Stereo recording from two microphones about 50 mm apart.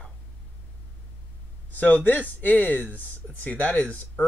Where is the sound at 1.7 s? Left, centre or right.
Left.